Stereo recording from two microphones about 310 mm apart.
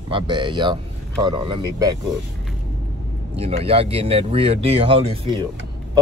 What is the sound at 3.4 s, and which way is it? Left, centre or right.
Speech, centre.